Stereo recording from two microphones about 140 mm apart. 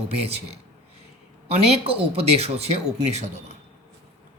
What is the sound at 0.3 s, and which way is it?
Speech, 45° right (ahead or behind).